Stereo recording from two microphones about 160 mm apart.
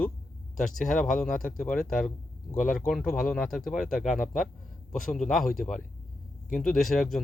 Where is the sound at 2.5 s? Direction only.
55° left (ahead or behind).